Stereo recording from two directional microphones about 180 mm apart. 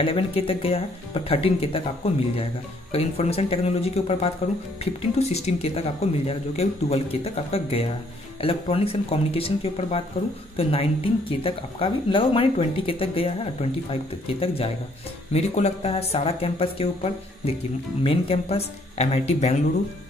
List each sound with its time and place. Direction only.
0.0 s speech: 30° left (ahead or behind)